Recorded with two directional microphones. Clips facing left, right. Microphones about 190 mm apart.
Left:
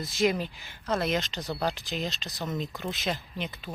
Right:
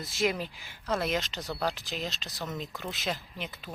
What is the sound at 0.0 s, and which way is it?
Speech, centre (ahead or behind).